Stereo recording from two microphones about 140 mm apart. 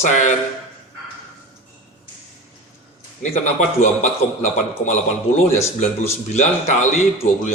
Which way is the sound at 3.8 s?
60° left (ahead or behind).